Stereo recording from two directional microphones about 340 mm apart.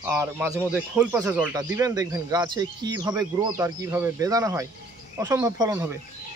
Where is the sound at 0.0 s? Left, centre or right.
Centre.